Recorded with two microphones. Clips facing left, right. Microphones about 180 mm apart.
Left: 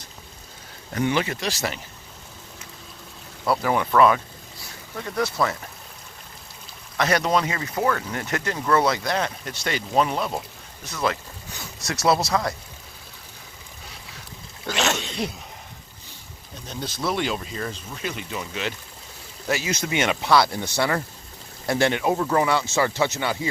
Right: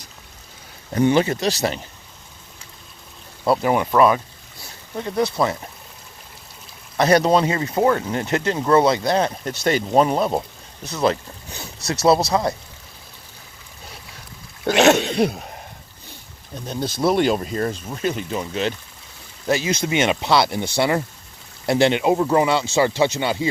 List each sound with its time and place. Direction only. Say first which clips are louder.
0.9 s speech: right 7 dB; 30° right (ahead or behind)
3.4 s speech: right 4 dB; 25° right (ahead or behind)
6.9 s speech: right 6 dB; 35° right (ahead or behind)
10.9 s boat: right 6 dB; 30° right (ahead or behind)
12.3 s speech: right 4 dB; 25° right (ahead or behind)
14.7 s throat clearing: right 11 dB; 60° right (ahead or behind)
16.6 s speech: right 7 dB; 35° right (ahead or behind)
17.2 s speech: right 8 dB; 45° right (ahead or behind); by 23.5 s 25° right (ahead or behind)